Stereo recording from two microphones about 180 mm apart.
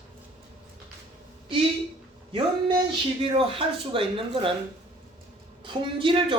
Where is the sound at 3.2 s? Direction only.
30° right (ahead or behind).